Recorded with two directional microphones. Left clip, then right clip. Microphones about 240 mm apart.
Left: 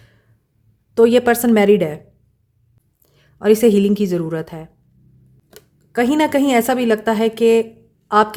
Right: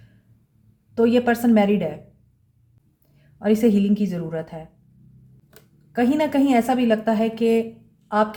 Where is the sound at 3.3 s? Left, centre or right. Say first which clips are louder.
Left 7 dB; left.